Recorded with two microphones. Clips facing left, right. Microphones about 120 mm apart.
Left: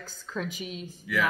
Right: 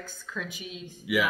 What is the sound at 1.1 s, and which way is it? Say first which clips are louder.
Speech: right 3 dB; 10° right (ahead or behind).